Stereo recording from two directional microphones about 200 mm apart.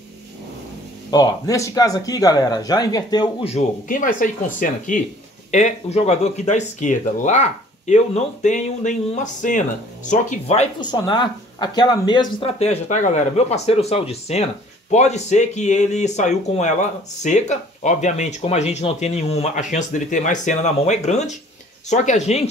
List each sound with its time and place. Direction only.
1.1 s speech: 20° left (ahead or behind)
3.5 s speech: 40° left (ahead or behind)
10.8 s speech: 20° left (ahead or behind)